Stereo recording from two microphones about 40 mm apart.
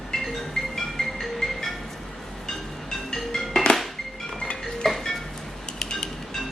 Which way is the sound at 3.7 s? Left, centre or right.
Left.